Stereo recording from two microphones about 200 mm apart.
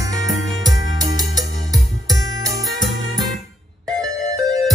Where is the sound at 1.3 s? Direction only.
20° right (ahead or behind).